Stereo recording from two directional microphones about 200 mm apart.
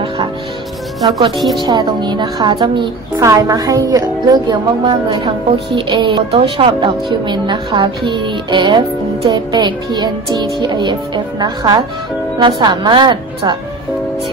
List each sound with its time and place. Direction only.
1.6 s speech: 20° right (ahead or behind)